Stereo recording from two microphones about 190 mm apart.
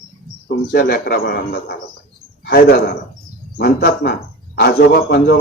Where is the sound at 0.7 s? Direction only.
55° left (ahead or behind).